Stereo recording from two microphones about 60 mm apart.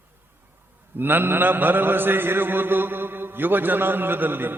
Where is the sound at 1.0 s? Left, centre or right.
Right.